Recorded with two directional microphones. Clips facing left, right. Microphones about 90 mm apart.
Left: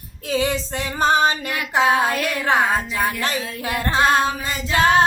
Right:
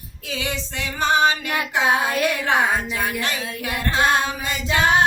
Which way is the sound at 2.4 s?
35° left (ahead or behind).